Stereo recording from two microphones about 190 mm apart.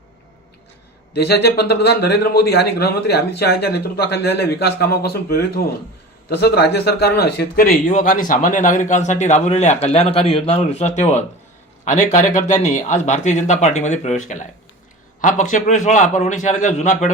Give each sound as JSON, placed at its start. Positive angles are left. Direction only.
{"t": 1.1, "sound": "a man's voice", "side_deg": 60}